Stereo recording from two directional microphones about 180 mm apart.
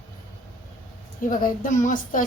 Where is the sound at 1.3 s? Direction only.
50° left (ahead or behind).